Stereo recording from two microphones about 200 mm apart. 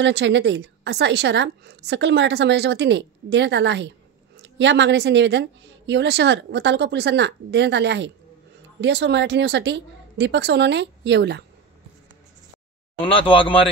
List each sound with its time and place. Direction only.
0.0 s a woman's voice: 60° right (ahead or behind)
13.0 s speech: 25° left (ahead or behind)